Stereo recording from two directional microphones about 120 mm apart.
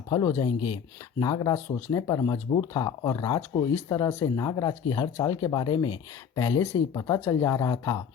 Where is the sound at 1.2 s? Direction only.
30° left (ahead or behind).